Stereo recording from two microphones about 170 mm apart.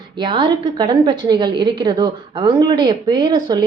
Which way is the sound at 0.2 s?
25° right (ahead or behind).